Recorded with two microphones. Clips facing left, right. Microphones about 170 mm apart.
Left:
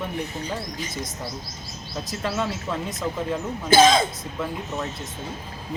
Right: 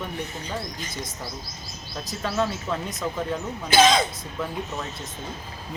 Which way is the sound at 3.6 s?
50° left (ahead or behind).